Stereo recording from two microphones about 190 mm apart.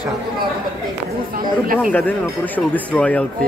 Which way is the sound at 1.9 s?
10° left (ahead or behind).